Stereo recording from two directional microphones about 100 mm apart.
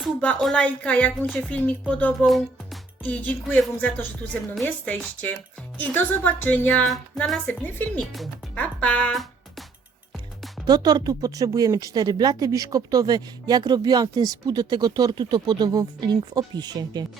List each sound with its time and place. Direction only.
0.3 s speech: 5° left (ahead or behind)
0.6 s speech: 15° left (ahead or behind)
2.2 s speech: centre (ahead or behind)
3.0 s speech: 15° left (ahead or behind)
10.7 s speech: 40° right (ahead or behind)